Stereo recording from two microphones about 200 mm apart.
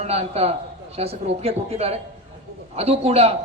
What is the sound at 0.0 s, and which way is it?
A man's voice, 30° right (ahead or behind).